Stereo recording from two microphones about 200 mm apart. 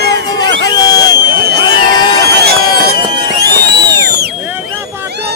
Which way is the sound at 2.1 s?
50° right (ahead or behind).